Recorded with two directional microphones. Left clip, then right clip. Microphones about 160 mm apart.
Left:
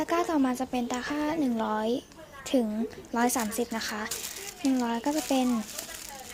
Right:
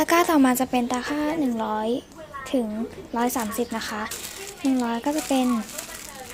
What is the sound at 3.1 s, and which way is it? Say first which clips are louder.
Speech: right 2 dB; 15° left (ahead or behind).